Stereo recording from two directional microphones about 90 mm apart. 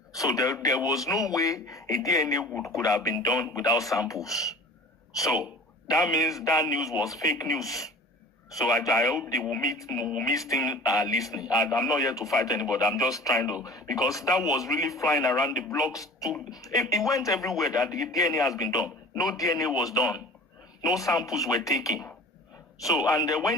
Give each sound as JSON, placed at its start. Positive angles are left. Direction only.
{"t": 0.1, "sound": "a man's voice", "side_deg": 40}
{"t": 10.0, "sound": "speech", "side_deg": -5}
{"t": 10.2, "sound": "a man's voice", "side_deg": 40}